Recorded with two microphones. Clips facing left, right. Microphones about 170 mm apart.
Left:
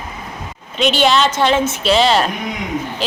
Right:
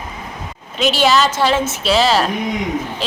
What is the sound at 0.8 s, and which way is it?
A woman's voice, centre (ahead or behind).